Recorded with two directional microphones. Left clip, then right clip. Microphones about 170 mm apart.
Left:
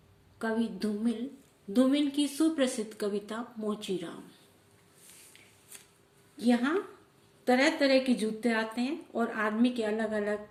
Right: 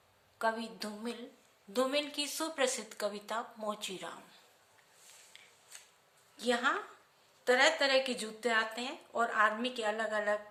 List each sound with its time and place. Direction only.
0.3 s a woman's voice: 25° right (ahead or behind)
6.4 s a woman's voice: 20° right (ahead or behind)